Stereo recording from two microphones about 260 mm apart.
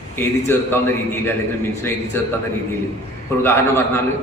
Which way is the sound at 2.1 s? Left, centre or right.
Centre.